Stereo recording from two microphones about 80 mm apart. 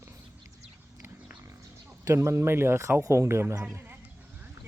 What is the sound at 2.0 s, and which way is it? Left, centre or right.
Speech, right.